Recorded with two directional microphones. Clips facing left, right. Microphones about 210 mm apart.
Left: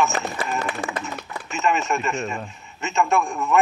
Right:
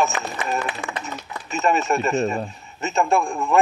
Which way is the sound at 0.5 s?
40° left (ahead or behind).